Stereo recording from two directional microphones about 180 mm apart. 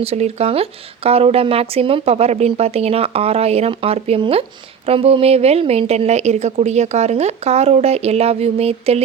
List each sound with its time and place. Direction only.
0.0 s speech: 35° right (ahead or behind)